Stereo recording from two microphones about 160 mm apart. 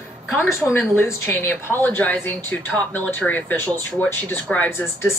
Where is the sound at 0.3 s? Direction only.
15° left (ahead or behind).